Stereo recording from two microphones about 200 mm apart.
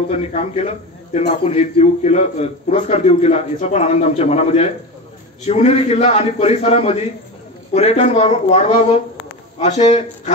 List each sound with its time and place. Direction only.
0.1 s a man's voice: 30° left (ahead or behind)